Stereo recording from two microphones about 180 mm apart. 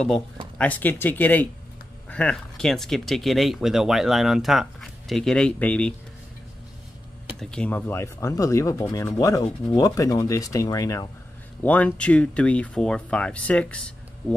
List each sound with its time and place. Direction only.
0.6 s speech: 10° left (ahead or behind)
7.3 s speech: 5° left (ahead or behind)